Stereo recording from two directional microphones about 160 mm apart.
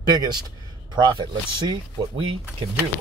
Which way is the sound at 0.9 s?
30° right (ahead or behind).